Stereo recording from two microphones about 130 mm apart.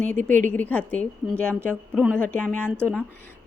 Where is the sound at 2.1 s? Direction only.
10° left (ahead or behind).